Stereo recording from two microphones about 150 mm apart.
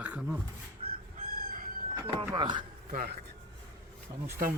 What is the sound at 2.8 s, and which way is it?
Speech, 70° right (ahead or behind).